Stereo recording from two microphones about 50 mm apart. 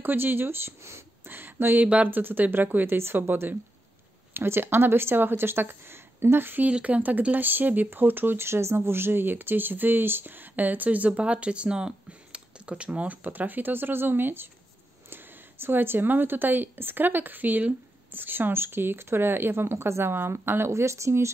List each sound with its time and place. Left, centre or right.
0.0 s speech: right
6.7 s speech: right